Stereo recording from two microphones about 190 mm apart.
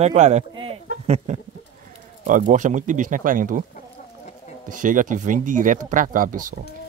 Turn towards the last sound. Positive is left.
turn(degrees=-45)  # may be behind; listen again after turning